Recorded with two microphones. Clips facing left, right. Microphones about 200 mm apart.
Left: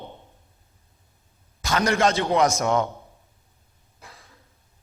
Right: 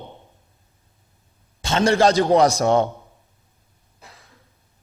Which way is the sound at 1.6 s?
30° right (ahead or behind).